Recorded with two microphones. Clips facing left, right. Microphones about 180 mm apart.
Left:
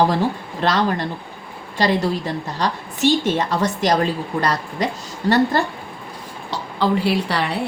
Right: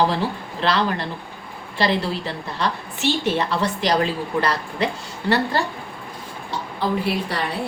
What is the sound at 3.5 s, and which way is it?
A woman's voice, 45° left (ahead or behind).